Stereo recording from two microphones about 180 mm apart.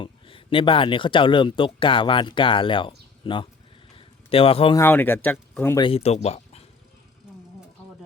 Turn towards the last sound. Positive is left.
turn(degrees=35)  # may be behind; listen again after turning